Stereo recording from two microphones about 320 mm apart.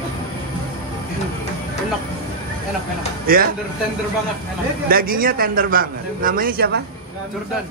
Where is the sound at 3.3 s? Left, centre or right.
Right.